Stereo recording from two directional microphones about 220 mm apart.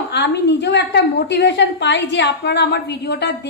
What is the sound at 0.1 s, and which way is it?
A woman's voice, 50° left (ahead or behind).